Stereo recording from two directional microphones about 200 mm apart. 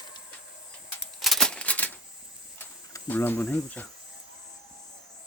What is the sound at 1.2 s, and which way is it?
Typewriter, centre (ahead or behind).